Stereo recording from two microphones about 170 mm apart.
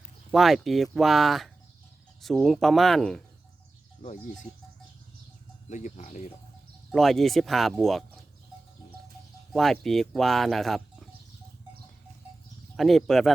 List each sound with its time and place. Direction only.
0.3 s speech: centre (ahead or behind)
4.0 s speech: 55° left (ahead or behind)
5.6 s speech: 45° left (ahead or behind)
6.9 s speech: centre (ahead or behind)
9.5 s speech: centre (ahead or behind)
12.7 s speech: centre (ahead or behind)